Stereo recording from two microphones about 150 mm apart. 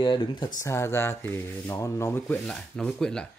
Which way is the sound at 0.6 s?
15° left (ahead or behind).